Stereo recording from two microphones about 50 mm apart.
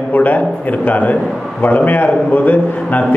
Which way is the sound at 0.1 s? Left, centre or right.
Left.